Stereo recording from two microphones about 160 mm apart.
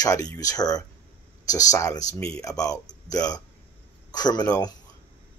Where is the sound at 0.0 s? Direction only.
20° left (ahead or behind).